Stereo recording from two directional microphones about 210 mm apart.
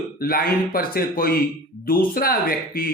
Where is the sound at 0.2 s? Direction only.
45° left (ahead or behind).